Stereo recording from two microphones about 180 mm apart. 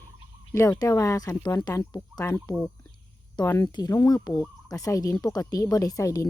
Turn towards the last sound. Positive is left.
turn(degrees=20)  # may be behind; listen again after turning